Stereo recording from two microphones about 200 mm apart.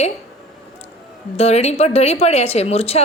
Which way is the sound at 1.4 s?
35° left (ahead or behind).